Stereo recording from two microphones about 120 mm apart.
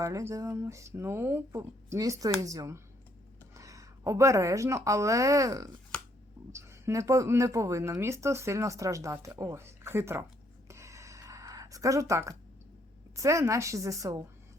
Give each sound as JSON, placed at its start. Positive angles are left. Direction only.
{"t": 0.0, "sound": "speech", "side_deg": -25}
{"t": 10.7, "sound": "a sound", "side_deg": -25}
{"t": 13.1, "sound": "speech", "side_deg": -25}